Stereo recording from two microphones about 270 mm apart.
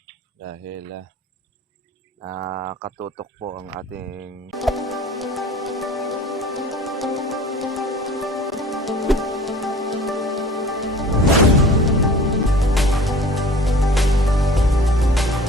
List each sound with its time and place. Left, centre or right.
2.7 s speech: right
4.5 s music: centre